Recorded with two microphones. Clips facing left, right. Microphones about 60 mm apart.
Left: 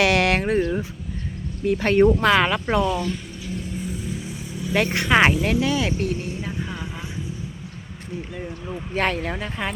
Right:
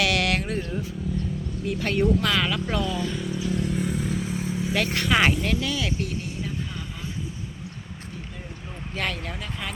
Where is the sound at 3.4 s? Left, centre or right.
Right.